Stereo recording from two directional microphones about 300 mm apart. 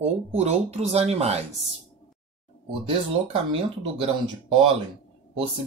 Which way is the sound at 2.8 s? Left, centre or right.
Centre.